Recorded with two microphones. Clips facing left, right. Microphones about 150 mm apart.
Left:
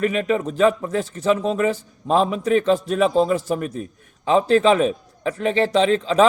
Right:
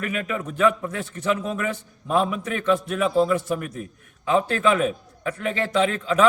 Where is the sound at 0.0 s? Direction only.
30° left (ahead or behind).